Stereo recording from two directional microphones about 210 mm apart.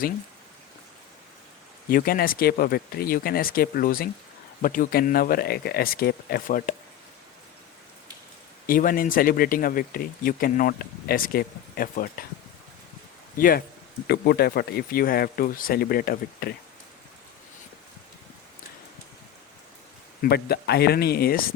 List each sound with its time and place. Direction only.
1.9 s speech: 45° left (ahead or behind)
8.6 s speech: 40° left (ahead or behind)
13.3 s speech: 45° left (ahead or behind)
20.2 s speech: 50° left (ahead or behind)